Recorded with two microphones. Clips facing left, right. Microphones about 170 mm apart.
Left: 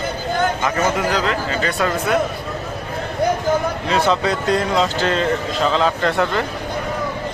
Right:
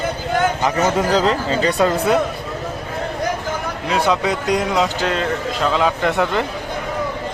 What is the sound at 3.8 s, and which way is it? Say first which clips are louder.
A man's voice: right 2 dB; 10° right (ahead or behind).